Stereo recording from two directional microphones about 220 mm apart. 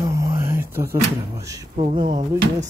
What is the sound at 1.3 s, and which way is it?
Speech, 15° right (ahead or behind).